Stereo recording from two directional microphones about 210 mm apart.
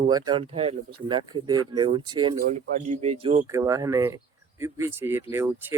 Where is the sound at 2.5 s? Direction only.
35° right (ahead or behind).